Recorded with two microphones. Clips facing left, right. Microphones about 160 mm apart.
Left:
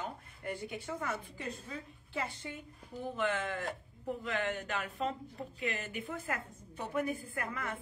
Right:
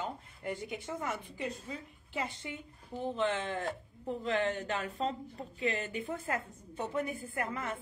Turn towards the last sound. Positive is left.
turn(degrees=-25)  # may be behind; listen again after turning